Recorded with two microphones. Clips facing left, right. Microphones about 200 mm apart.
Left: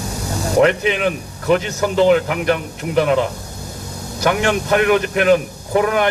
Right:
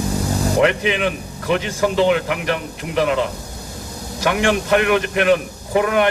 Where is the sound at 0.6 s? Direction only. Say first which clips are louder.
Left 3 dB; 40° left (ahead or behind).